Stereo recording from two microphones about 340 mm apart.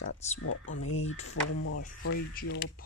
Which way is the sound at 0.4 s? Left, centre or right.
Left.